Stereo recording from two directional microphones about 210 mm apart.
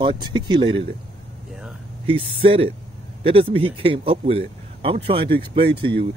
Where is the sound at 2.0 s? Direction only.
25° right (ahead or behind).